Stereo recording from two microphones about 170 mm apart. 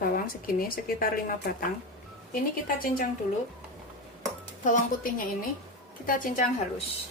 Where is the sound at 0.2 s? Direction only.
60° left (ahead or behind).